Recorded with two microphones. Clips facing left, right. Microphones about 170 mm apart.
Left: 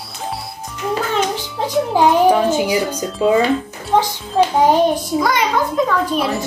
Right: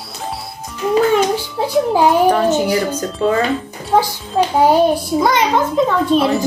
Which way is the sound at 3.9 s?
10° right (ahead or behind).